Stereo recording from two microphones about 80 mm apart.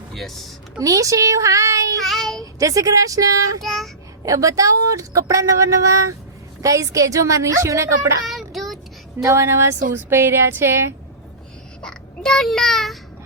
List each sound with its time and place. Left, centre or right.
0.1 s speech: centre
0.8 s speech: right
2.0 s child singing: centre
2.4 s speech: right
3.6 s child singing: centre
4.2 s speech: right
8.3 s child singing: centre
9.2 s a woman's voice: right
11.8 s a child's voice: centre